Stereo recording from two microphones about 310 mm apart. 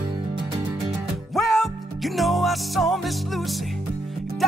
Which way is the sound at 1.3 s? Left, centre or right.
Centre.